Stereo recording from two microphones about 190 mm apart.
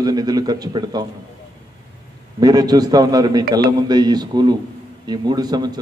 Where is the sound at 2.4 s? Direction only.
20° right (ahead or behind).